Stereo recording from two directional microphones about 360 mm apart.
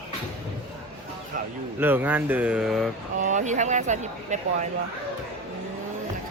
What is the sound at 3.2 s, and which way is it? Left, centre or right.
Speech, centre.